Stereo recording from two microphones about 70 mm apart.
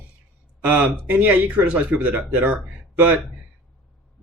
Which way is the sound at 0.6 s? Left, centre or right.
Right.